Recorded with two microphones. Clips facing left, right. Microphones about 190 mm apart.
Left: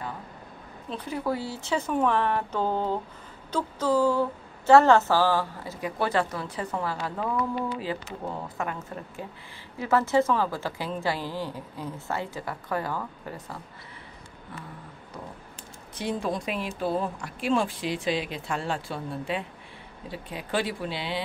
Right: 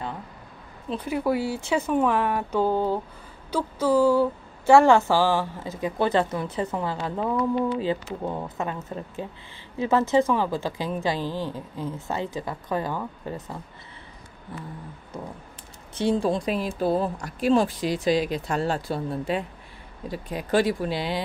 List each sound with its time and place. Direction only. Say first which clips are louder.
0.8 s speech: right 5 dB; 10° right (ahead or behind)
3.5 s a sound: right 3 dB; 10° right (ahead or behind)
9.8 s speech: right 2 dB; 20° right (ahead or behind)
11.1 s a woman's voice: right 4 dB; 10° left (ahead or behind)
12.1 s speech: right 1 dB; 20° right (ahead or behind)
13.3 s a sound: right 5 dB; 20° right (ahead or behind)
16.0 s speech: right 6 dB; 30° right (ahead or behind)